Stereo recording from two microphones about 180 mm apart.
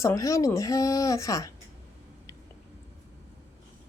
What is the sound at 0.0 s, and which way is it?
A woman's voice, 15° left (ahead or behind).